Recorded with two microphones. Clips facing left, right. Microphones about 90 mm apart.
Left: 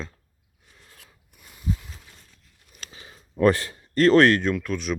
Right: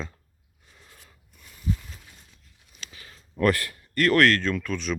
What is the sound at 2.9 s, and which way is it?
Speech, 20° left (ahead or behind).